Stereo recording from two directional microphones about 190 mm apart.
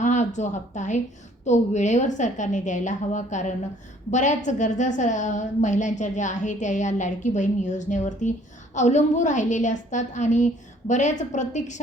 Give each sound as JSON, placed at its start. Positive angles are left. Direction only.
{"t": 0.0, "sound": "a woman's voice", "side_deg": 40}